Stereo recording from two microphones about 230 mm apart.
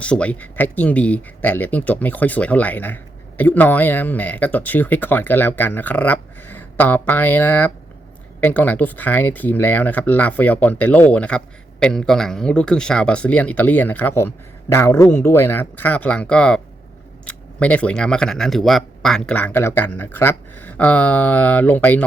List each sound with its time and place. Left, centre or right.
0.0 s speech: centre